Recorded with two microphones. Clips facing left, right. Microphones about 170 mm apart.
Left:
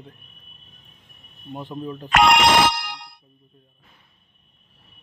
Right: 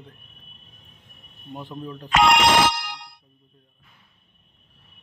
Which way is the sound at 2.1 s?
65° left (ahead or behind).